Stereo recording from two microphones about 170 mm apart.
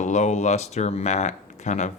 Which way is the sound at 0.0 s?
45° left (ahead or behind).